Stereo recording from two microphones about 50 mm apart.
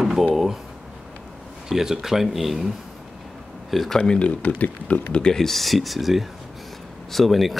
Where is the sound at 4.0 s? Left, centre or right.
Left.